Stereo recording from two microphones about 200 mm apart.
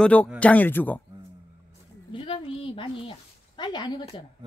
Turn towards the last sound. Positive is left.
turn(degrees=20)  # may be behind; listen again after turning